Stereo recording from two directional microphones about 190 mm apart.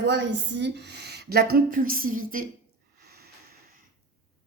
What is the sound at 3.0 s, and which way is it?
Snort, 55° right (ahead or behind).